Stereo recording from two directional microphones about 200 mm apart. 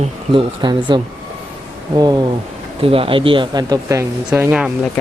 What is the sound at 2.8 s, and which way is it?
Speech, 30° right (ahead or behind).